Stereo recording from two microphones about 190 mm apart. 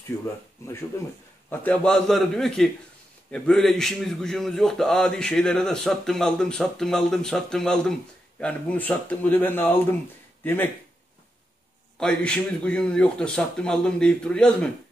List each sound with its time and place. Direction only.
0.1 s speech: 20° left (ahead or behind)
1.5 s a man's voice: 10° left (ahead or behind)
12.0 s a man's voice: 5° left (ahead or behind)